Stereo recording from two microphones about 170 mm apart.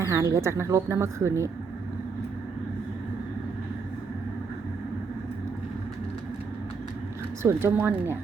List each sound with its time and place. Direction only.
0.0 s a woman's voice: 20° right (ahead or behind)
7.4 s a woman's voice: 10° right (ahead or behind)